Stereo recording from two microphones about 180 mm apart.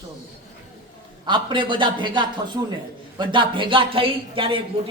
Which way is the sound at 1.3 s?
25° right (ahead or behind).